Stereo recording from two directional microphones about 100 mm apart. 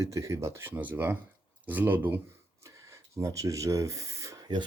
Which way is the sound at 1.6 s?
20° right (ahead or behind).